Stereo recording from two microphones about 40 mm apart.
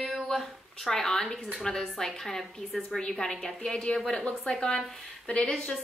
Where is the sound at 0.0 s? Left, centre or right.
Centre.